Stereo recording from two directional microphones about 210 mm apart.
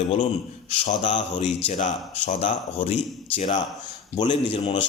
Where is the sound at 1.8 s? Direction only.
35° left (ahead or behind).